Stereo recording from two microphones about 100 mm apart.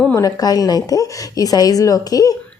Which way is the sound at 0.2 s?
40° left (ahead or behind).